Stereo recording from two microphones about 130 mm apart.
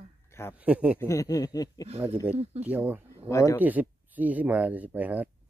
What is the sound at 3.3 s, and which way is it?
Speech, 25° left (ahead or behind).